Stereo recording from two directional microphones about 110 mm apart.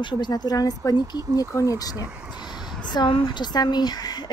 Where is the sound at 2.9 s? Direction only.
45° left (ahead or behind).